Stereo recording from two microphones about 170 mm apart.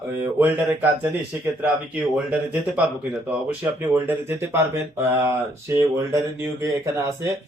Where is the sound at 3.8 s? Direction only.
10° right (ahead or behind).